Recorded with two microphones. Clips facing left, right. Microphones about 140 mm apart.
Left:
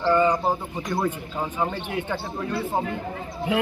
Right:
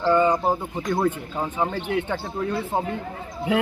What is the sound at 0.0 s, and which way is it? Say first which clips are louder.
Bird: right 1 dB; 20° right (ahead or behind).